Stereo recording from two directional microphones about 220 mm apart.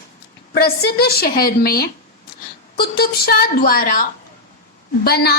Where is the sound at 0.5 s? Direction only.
45° left (ahead or behind).